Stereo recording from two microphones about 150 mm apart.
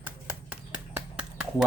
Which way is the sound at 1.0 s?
10° right (ahead or behind).